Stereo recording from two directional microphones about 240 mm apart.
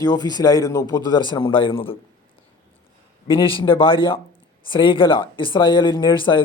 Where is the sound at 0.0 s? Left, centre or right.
Centre.